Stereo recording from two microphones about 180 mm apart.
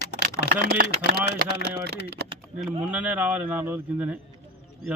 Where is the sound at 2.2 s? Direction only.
65° right (ahead or behind).